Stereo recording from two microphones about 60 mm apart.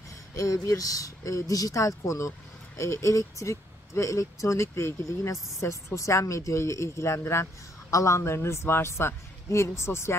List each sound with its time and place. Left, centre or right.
0.3 s speech: left